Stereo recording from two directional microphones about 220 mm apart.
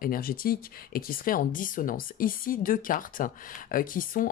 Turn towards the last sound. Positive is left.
turn(degrees=40)  # may be behind; listen again after turning